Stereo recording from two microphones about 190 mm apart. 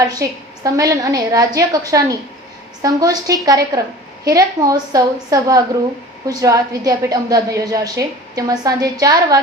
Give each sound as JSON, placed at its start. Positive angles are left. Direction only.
{"t": 0.0, "sound": "a woman's voice", "side_deg": -20}